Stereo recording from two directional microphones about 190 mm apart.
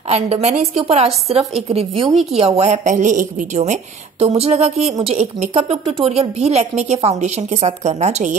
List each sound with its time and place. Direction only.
0.1 s a woman's voice: 35° right (ahead or behind)